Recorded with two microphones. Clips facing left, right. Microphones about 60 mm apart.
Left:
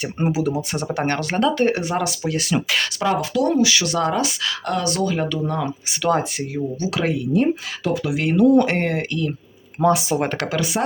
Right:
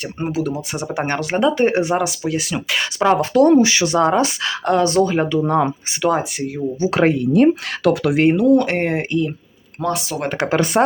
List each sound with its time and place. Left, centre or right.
0.0 s speech: centre
0.7 s speech: centre; by 2.0 s right
2.0 s speech: centre
3.0 s speech: right
3.3 s speech: right
5.5 s speech: right
6.0 s speech: centre
6.9 s speech: right
7.3 s speech: right
8.4 s speech: centre
8.8 s speech: right
9.8 s speech: centre
10.5 s speech: right